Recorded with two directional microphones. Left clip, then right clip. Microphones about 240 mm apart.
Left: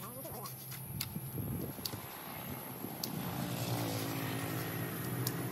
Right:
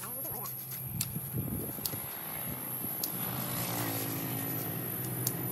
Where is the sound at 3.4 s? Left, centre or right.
Centre.